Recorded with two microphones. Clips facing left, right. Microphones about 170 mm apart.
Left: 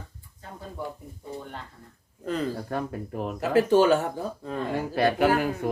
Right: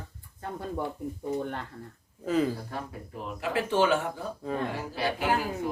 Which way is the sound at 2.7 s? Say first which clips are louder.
Left 7 dB; 55° left (ahead or behind).